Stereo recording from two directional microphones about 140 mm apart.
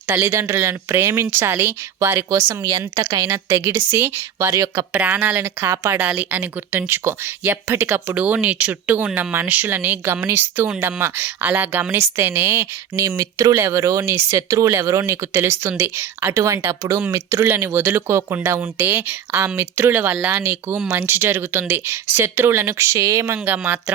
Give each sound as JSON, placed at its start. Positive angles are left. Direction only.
{"t": 0.1, "sound": "speech", "side_deg": -15}